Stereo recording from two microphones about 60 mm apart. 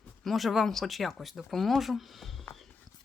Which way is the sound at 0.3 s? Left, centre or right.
Centre.